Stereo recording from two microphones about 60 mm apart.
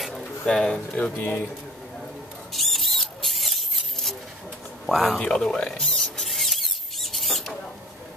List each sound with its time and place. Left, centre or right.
0.0 s a sound: centre
0.5 s speech: centre
0.9 s speech: left
2.5 s rodents: centre
4.8 s speech: centre
5.2 s speech: centre
5.7 s rodents: centre